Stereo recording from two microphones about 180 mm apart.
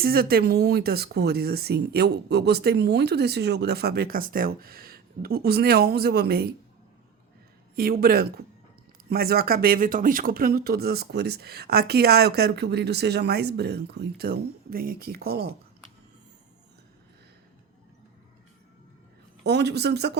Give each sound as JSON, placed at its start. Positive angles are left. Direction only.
{"t": 0.0, "sound": "speech", "side_deg": -55}
{"t": 7.8, "sound": "speech", "side_deg": -55}
{"t": 19.4, "sound": "speech", "side_deg": -70}